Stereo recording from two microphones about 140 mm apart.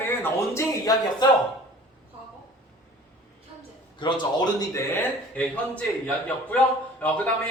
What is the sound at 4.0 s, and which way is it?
Speech, 35° left (ahead or behind).